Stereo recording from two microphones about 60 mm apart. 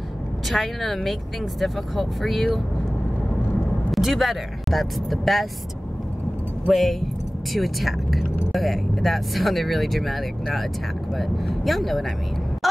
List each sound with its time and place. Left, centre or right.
0.5 s speech: centre
3.9 s speech: centre
6.7 s speech: centre